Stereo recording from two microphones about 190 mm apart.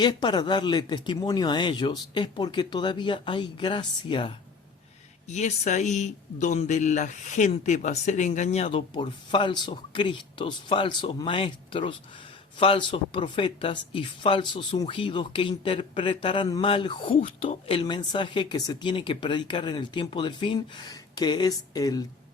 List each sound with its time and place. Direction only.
0.0 s speech: 25° left (ahead or behind)
5.3 s speech: 35° left (ahead or behind); by 22.0 s 20° left (ahead or behind)